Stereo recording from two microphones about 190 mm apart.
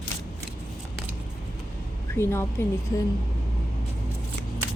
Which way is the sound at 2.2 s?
15° left (ahead or behind).